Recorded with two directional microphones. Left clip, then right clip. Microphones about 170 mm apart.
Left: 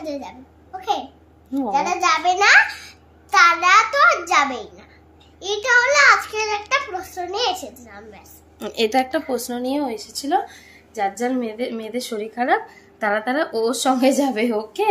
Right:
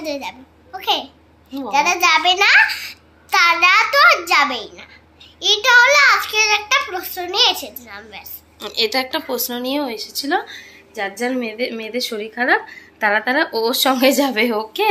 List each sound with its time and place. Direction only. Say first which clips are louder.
0.0 s a child's voice: right 4 dB; 5° left (ahead or behind)
8.5 s a woman's voice: even; 60° left (ahead or behind)
9.5 s speech: right 1 dB; 20° left (ahead or behind)
10.2 s a child's voice: even; 5° left (ahead or behind)